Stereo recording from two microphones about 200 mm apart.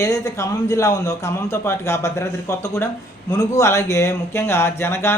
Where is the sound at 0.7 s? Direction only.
15° left (ahead or behind).